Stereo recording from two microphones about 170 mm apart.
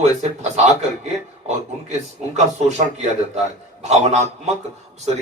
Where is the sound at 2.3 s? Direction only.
40° right (ahead or behind).